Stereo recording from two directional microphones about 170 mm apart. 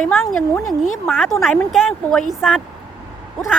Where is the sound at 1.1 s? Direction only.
Centre (ahead or behind).